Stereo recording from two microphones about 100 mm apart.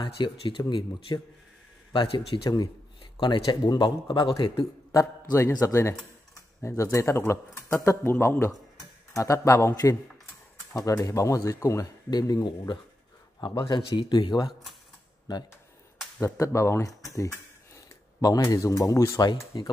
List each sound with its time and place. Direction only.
0.0 s speech: 55° left (ahead or behind)
3.4 s speech: 35° left (ahead or behind)
3.8 s speech: 55° left (ahead or behind)
4.9 s speech: 30° left (ahead or behind)
10.9 s speech: 35° left (ahead or behind)
13.4 s speech: 55° left (ahead or behind)
16.2 s speech: 30° left (ahead or behind)